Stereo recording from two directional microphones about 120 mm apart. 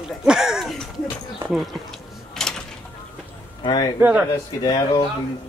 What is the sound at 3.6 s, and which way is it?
Speech, 40° left (ahead or behind).